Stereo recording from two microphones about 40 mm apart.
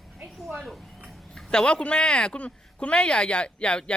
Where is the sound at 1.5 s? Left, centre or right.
Left.